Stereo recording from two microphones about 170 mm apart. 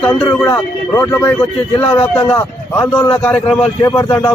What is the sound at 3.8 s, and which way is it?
Speech, 20° left (ahead or behind).